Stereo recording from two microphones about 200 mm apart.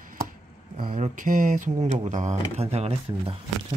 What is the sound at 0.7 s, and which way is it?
Speech, 40° right (ahead or behind).